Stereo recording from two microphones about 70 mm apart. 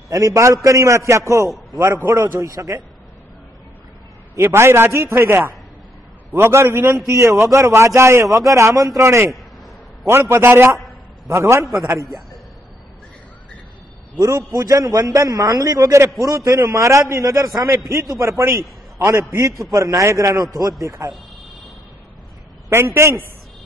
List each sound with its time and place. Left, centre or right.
0.1 s a man's voice: right
4.4 s a man's voice: right
7.1 s a man's voice: right
14.2 s a man's voice: right
22.7 s a man's voice: right